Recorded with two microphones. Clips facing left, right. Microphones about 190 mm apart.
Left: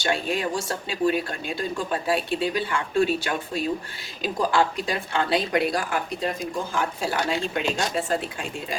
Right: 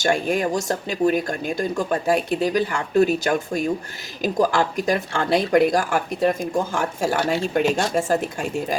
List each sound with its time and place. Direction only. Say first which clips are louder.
0.0 s speech: right 5 dB; 45° right (ahead or behind)